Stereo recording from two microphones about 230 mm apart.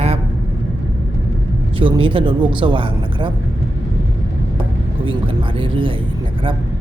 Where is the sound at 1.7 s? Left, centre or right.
Right.